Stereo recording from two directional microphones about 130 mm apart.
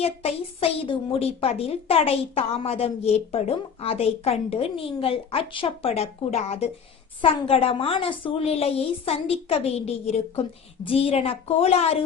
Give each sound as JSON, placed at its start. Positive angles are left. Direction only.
{"t": 0.0, "sound": "a woman's voice", "side_deg": 50}